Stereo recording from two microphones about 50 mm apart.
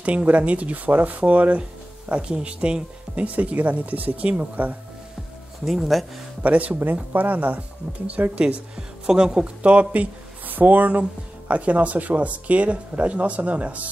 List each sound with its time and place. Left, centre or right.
0.0 s speech: right
5.7 s speech: centre
6.4 s speech: right
8.7 s speech: centre